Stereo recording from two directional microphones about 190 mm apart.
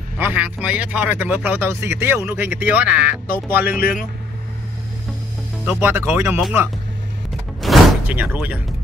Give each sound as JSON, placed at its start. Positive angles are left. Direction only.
{"t": 0.2, "sound": "speech", "side_deg": -10}
{"t": 5.7, "sound": "speech", "side_deg": -10}
{"t": 7.6, "sound": "door", "side_deg": -5}